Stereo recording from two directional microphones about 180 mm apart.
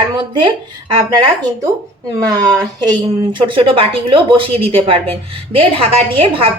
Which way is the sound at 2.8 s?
25° right (ahead or behind).